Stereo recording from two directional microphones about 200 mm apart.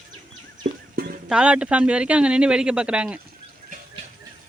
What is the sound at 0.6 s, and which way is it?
Music, 45° right (ahead or behind).